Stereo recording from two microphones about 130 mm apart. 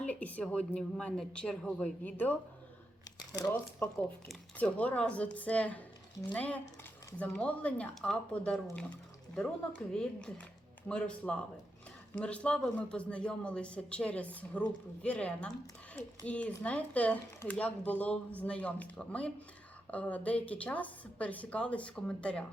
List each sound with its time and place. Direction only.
0.0 s speech: 10° left (ahead or behind)